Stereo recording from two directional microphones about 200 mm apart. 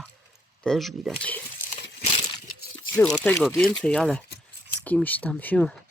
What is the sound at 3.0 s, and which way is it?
Speech, 10° left (ahead or behind).